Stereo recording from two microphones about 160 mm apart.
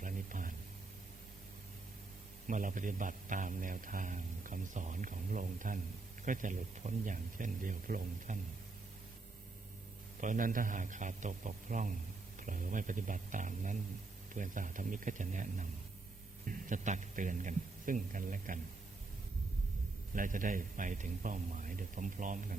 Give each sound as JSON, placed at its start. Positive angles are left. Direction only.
{"t": 0.0, "sound": "a sound", "side_deg": -55}
{"t": 2.5, "sound": "speech", "side_deg": -55}
{"t": 10.2, "sound": "a man's voice", "side_deg": -55}
{"t": 20.1, "sound": "speech", "side_deg": -55}